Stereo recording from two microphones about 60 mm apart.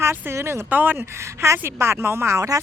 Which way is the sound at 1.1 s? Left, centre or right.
Right.